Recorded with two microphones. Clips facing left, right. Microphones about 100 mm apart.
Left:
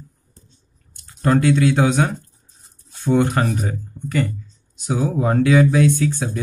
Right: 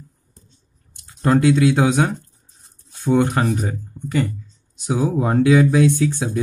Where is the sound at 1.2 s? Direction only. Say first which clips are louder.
Right 1 dB; 10° right (ahead or behind).